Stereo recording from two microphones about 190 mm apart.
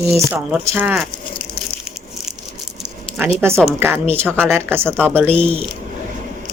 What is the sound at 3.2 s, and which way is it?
A woman's voice, 10° right (ahead or behind).